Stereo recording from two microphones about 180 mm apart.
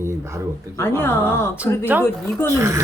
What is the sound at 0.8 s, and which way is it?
Speech, 15° left (ahead or behind).